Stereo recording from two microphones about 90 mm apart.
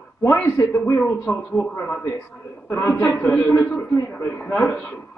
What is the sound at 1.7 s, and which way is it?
Speech, 20° left (ahead or behind).